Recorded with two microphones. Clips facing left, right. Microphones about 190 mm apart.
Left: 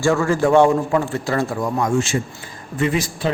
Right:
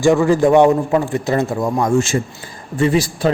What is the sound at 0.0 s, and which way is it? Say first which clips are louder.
A man's voice: right 5 dB; 15° right (ahead or behind).